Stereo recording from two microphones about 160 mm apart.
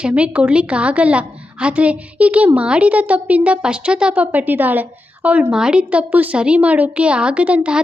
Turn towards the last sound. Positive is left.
turn(degrees=-5)  # may be behind; listen again after turning